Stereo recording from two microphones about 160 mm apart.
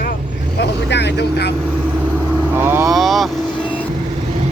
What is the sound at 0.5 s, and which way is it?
Speech, 90° left.